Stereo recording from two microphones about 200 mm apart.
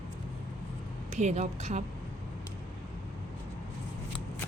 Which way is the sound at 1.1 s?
35° right (ahead or behind).